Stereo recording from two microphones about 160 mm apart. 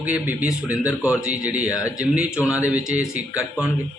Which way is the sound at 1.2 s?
10° right (ahead or behind).